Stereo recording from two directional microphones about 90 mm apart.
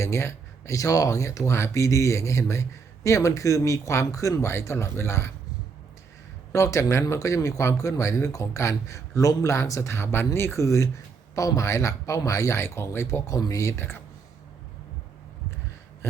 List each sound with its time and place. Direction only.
0.0 s speech: 30° left (ahead or behind)
6.5 s speech: 35° left (ahead or behind)